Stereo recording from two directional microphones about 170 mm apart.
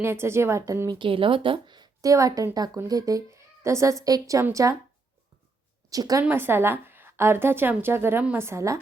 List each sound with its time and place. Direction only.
0.0 s a woman's voice: 15° right (ahead or behind)
5.9 s a woman's voice: 20° right (ahead or behind)